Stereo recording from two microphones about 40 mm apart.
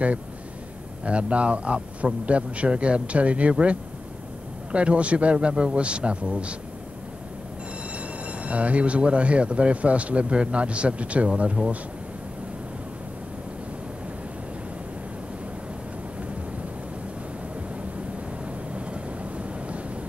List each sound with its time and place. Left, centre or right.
1.0 s speech: right
4.7 s a man's voice: right
8.3 s speech: right
18.9 s vehicle: right